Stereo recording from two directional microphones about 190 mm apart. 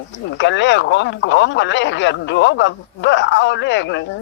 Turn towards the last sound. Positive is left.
turn(degrees=70)  # may be behind; listen again after turning